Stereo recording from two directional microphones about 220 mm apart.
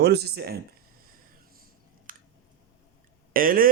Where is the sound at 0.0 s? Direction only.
50° right (ahead or behind).